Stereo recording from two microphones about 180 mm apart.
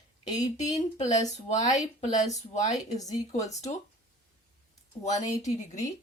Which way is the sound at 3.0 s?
20° left (ahead or behind).